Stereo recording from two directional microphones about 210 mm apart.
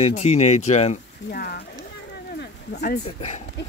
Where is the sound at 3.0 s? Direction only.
30° left (ahead or behind).